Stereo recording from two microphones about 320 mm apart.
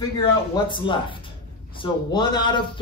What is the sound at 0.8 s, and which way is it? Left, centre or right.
Speech, centre.